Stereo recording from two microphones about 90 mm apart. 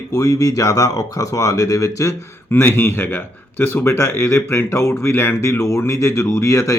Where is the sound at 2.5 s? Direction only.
25° left (ahead or behind).